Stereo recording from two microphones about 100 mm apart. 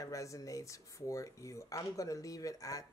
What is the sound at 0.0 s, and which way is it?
Speech, 35° left (ahead or behind).